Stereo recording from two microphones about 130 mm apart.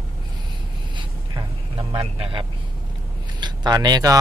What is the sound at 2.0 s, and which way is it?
Speech, 45° right (ahead or behind).